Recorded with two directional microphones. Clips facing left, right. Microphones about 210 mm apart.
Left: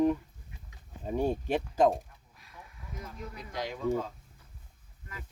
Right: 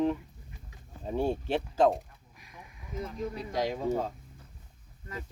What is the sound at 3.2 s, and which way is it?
Speech, 35° right (ahead or behind).